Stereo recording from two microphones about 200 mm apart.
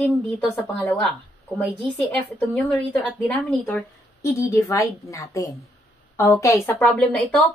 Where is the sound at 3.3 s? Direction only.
5° left (ahead or behind).